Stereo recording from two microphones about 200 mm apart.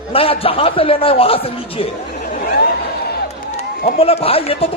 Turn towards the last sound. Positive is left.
turn(degrees=30)  # may be behind; listen again after turning